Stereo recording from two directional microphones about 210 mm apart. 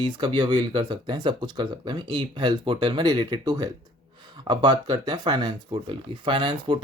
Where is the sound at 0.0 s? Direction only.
20° right (ahead or behind).